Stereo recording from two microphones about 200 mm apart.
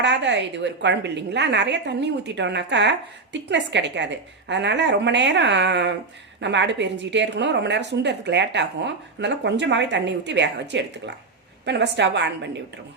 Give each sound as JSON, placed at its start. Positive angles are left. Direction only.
{"t": 0.0, "sound": "a woman's voice", "side_deg": -65}